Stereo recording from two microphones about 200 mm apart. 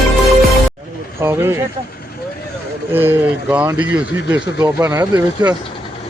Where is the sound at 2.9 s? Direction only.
10° right (ahead or behind).